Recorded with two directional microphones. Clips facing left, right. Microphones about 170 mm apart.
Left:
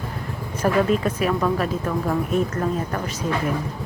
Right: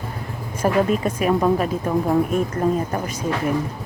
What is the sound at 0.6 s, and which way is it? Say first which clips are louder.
Speech: right 1 dB; 10° right (ahead or behind).